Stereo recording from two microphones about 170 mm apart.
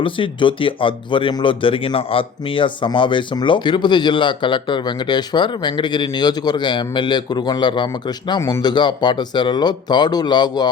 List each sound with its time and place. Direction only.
0.0 s speech: 30° left (ahead or behind)